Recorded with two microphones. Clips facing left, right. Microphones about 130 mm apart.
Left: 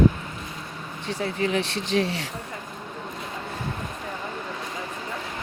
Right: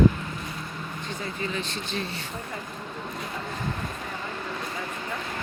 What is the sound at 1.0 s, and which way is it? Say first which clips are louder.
Speech: left 8 dB; 75° left (ahead or behind).